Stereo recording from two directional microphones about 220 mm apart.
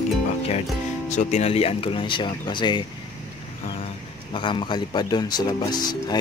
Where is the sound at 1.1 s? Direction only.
30° left (ahead or behind).